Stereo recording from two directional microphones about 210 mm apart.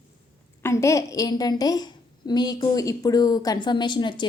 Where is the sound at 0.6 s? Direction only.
15° left (ahead or behind).